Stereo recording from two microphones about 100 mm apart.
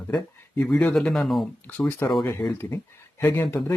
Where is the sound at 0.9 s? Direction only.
5° left (ahead or behind).